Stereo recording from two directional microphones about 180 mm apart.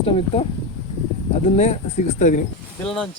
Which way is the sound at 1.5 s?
40° left (ahead or behind).